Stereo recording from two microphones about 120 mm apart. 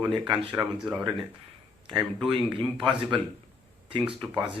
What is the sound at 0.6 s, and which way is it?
Speech, 30° right (ahead or behind).